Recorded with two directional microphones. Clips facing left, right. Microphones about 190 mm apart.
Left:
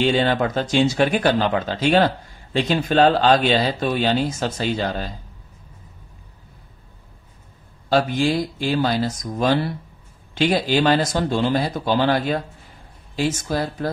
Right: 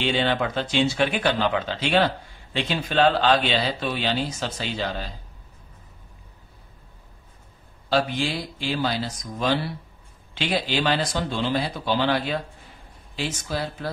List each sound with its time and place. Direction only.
0.0 s speech: 40° left (ahead or behind)
7.9 s speech: 45° left (ahead or behind)